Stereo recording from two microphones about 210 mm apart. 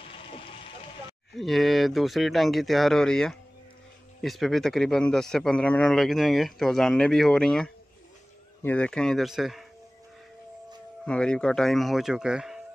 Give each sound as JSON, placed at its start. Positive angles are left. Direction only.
{"t": 0.1, "sound": "a sound", "side_deg": 25}
{"t": 1.3, "sound": "a man's voice", "side_deg": 0}
{"t": 11.1, "sound": "a man's voice", "side_deg": 5}